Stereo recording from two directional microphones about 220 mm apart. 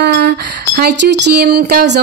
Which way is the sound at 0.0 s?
50° right (ahead or behind).